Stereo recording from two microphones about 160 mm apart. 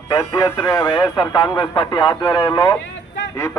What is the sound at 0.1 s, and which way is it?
Speech, 20° left (ahead or behind).